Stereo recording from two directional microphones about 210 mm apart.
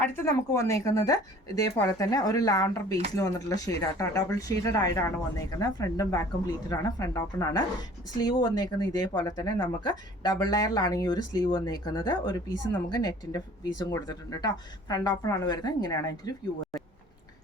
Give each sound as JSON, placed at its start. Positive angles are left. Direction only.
{"t": 0.0, "sound": "speech", "side_deg": 10}